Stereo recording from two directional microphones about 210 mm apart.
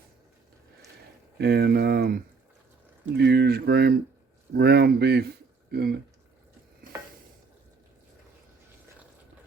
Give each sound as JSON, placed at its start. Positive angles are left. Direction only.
{"t": 1.4, "sound": "speech", "side_deg": -50}